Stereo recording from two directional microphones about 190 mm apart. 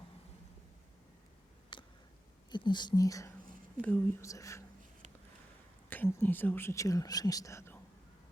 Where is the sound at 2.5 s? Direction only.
25° left (ahead or behind).